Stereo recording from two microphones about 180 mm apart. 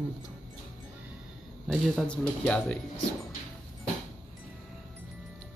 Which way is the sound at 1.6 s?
Centre (ahead or behind).